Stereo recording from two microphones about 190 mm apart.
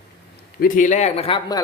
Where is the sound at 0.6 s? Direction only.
40° left (ahead or behind).